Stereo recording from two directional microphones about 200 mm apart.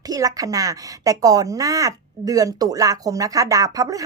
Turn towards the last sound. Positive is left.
turn(degrees=-15)  # may be behind; listen again after turning